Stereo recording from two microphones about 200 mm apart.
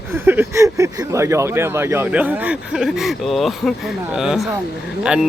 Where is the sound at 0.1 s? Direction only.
10° right (ahead or behind).